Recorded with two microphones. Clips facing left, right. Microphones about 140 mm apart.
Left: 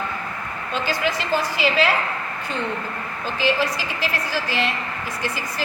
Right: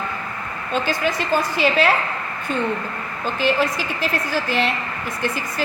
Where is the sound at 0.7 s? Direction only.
50° right (ahead or behind).